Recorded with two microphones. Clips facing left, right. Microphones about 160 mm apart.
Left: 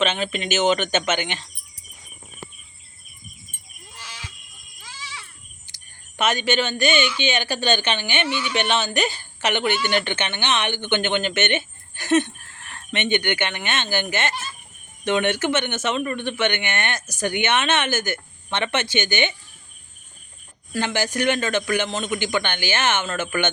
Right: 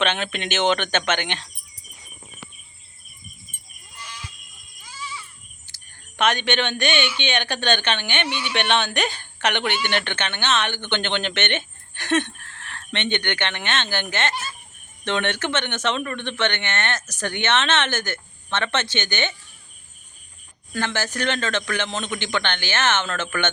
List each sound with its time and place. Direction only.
0.0 s speech: 5° left (ahead or behind)
3.9 s a sound: 90° left
4.8 s children playing: 90° left
5.7 s speech: 5° left (ahead or behind)
8.3 s speech: 15° right (ahead or behind)
8.5 s speech: 5° left (ahead or behind)
20.7 s speech: 15° left (ahead or behind)